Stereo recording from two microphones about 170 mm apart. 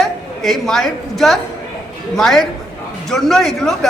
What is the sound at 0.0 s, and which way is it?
A woman's voice, centre (ahead or behind).